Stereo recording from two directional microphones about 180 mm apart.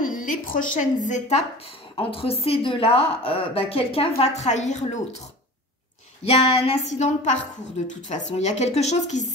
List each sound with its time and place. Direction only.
0.0 s a woman's voice: 50° left (ahead or behind)
2.0 s a woman's voice: 30° left (ahead or behind)
6.6 s a woman's voice: 40° left (ahead or behind)